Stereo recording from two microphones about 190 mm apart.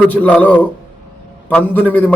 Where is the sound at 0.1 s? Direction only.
5° left (ahead or behind).